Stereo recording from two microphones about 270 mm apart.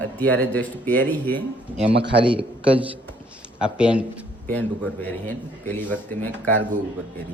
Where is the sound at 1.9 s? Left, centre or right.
Right.